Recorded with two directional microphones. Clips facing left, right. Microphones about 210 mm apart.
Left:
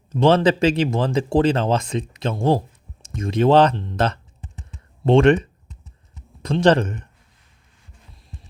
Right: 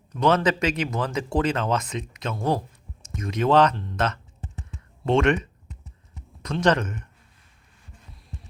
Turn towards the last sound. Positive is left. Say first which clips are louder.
# left 5 dB
turn(degrees=30)  # may be behind; listen again after turning